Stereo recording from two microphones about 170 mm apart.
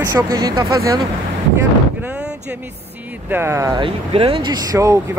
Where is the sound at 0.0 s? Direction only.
20° right (ahead or behind).